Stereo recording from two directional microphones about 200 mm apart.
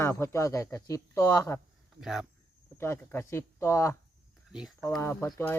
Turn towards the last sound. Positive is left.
turn(degrees=15)  # may be behind; listen again after turning